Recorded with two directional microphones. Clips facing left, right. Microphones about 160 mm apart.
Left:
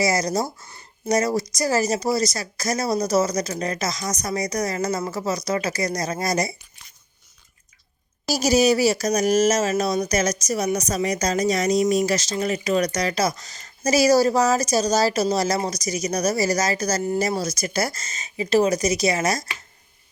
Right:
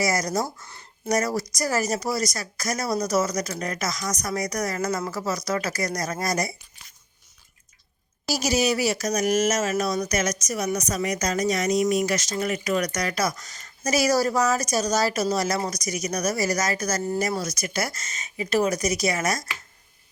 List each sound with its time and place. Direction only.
0.0 s speech: 25° left (ahead or behind)
8.3 s speech: 40° left (ahead or behind)